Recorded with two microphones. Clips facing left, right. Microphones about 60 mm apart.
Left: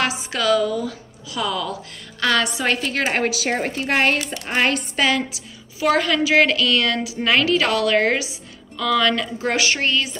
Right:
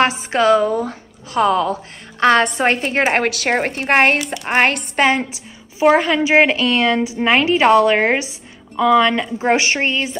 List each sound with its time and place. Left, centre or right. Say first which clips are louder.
0.0 s a woman's voice: right 7 dB; right
3.3 s a woman's voice: right 4 dB; right